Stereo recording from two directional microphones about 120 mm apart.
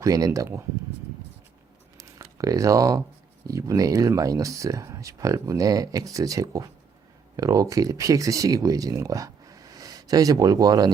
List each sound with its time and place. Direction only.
0.0 s speech: 30° right (ahead or behind)
2.0 s a sound: 25° right (ahead or behind)
2.4 s speech: 30° right (ahead or behind)